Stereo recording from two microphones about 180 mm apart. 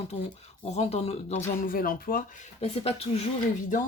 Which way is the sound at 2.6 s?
35° left (ahead or behind).